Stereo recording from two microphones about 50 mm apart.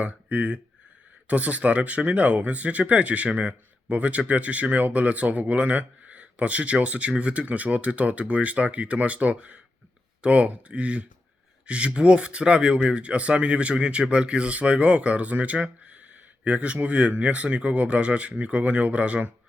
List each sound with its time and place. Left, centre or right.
0.0 s speech: right